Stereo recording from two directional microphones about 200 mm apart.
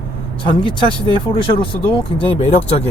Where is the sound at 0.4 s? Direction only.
25° left (ahead or behind).